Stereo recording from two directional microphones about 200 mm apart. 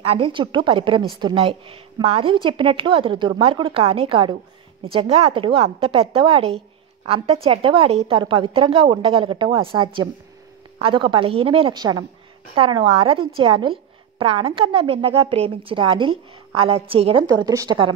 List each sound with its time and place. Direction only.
0.0 s a woman's voice: 25° right (ahead or behind)